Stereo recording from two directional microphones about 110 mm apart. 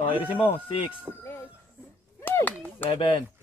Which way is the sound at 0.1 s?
50° left (ahead or behind).